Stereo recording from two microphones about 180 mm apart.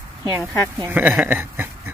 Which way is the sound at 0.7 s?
10° right (ahead or behind).